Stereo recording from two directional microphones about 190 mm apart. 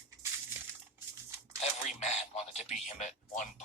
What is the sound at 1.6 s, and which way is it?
A man's voice, 40° left (ahead or behind).